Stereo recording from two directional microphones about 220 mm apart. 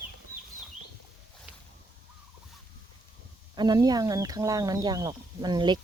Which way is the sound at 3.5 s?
20° right (ahead or behind).